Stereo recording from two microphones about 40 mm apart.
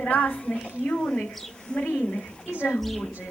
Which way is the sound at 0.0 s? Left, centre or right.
Left.